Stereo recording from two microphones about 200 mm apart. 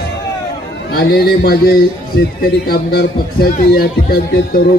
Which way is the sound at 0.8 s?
50° left (ahead or behind).